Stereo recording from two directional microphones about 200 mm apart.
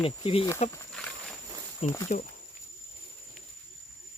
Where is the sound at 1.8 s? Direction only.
30° left (ahead or behind).